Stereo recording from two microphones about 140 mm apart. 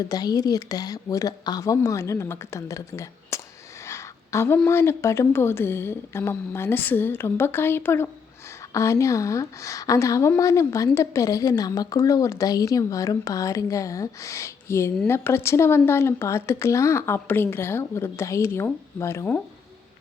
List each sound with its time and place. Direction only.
0.0 s a woman's voice: 30° left (ahead or behind)